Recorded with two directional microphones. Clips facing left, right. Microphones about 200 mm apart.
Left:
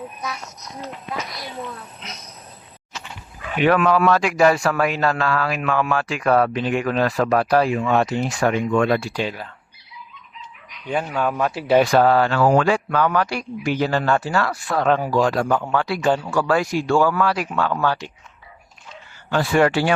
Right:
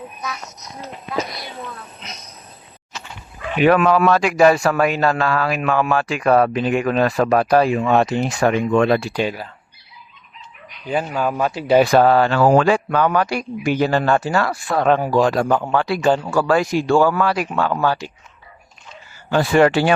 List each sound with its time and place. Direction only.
3.7 s speech: 20° right (ahead or behind)
10.8 s speech: 5° right (ahead or behind)
11.9 s speech: 20° right (ahead or behind)
14.5 s speech: 25° right (ahead or behind)
15.5 s speech: 35° right (ahead or behind)
16.9 s speech: 25° right (ahead or behind)
17.8 s speech: 5° right (ahead or behind)
19.3 s speech: 20° right (ahead or behind)